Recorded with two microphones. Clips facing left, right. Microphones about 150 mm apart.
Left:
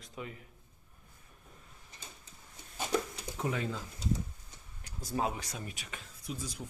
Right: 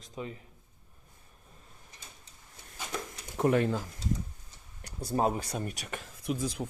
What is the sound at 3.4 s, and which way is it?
Speech, 60° right (ahead or behind).